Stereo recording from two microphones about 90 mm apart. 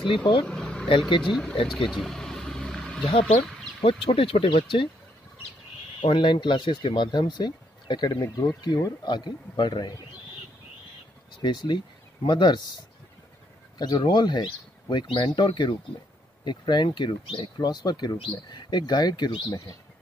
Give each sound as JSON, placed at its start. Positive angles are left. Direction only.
{"t": 0.0, "sound": "speech", "side_deg": 70}
{"t": 0.5, "sound": "a sound", "side_deg": 10}
{"t": 1.7, "sound": "vehicle", "side_deg": 5}
{"t": 3.1, "sound": "speech", "side_deg": 90}
{"t": 6.0, "sound": "a man's voice", "side_deg": 60}
{"t": 11.4, "sound": "speech", "side_deg": 55}
{"t": 13.7, "sound": "speech", "side_deg": 50}
{"t": 17.6, "sound": "a man's voice", "side_deg": 50}
{"t": 18.1, "sound": "a man's voice", "side_deg": 65}